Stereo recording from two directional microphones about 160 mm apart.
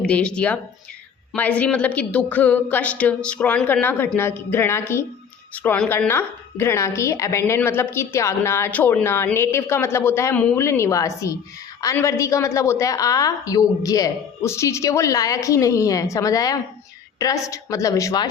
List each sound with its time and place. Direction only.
0.0 s a woman's voice: 5° left (ahead or behind); by 18.3 s 20° left (ahead or behind)